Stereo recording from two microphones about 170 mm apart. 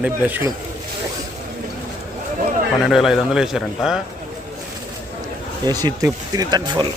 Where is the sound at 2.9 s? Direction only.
Centre (ahead or behind).